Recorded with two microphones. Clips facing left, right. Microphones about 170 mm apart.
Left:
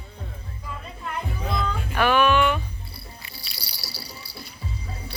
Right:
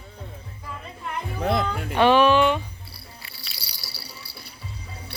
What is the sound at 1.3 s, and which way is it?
Music, 70° right (ahead or behind).